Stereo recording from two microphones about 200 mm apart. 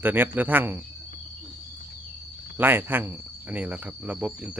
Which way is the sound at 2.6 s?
10° right (ahead or behind).